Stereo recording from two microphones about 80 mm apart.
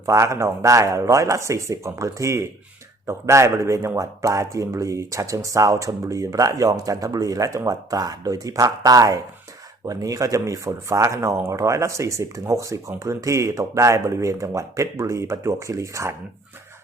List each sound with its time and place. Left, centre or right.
0.0 s speech: right